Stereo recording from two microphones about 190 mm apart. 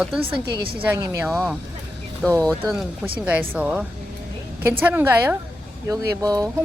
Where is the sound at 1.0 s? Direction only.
20° right (ahead or behind).